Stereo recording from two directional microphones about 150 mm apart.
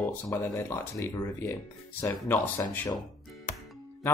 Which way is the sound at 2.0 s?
15° left (ahead or behind).